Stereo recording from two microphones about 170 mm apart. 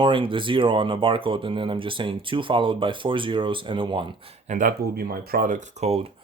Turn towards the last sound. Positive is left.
turn(degrees=-40)  # may be behind; listen again after turning